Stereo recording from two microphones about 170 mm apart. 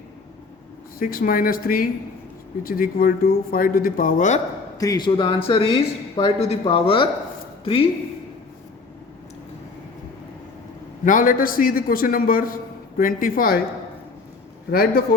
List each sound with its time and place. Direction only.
0.9 s speech: 60° left (ahead or behind)
4.8 s speech: 25° left (ahead or behind)
11.0 s speech: 50° left (ahead or behind)
14.7 s speech: 60° left (ahead or behind)